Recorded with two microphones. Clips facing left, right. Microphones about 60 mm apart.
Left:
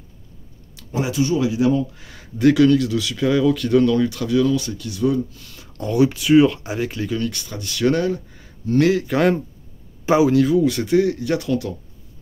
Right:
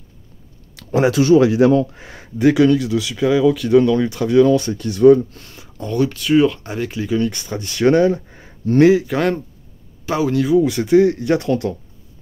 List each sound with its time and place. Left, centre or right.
0.7 s speech: right
1.9 s speech: right
2.4 s speech: centre
3.8 s speech: right
5.7 s speech: centre
7.2 s speech: right
9.0 s speech: centre
10.6 s speech: centre; by 11.7 s right